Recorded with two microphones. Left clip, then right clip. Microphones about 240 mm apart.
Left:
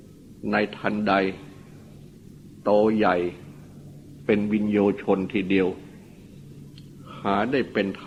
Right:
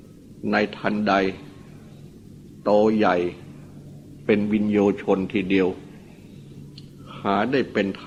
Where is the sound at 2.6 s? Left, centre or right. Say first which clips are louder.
Right 1 dB; left.